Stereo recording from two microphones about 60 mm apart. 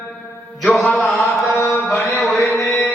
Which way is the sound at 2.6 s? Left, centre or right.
Left.